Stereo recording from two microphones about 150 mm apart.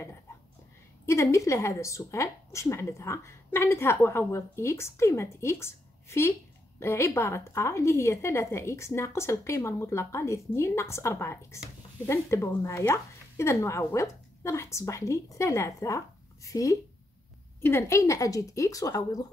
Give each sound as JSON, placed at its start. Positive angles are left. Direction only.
{"t": 1.0, "sound": "a woman's voice", "side_deg": 20}